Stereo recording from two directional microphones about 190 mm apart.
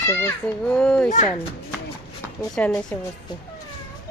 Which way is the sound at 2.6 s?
5° left (ahead or behind).